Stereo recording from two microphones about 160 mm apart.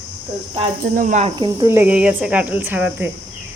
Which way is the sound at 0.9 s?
50° right (ahead or behind).